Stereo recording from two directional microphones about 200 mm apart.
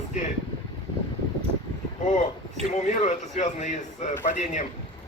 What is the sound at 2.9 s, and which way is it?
A man's voice, 35° left (ahead or behind).